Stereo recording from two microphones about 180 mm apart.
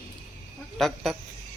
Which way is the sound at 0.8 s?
Centre (ahead or behind).